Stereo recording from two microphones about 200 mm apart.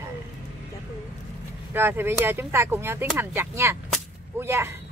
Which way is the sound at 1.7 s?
10° right (ahead or behind).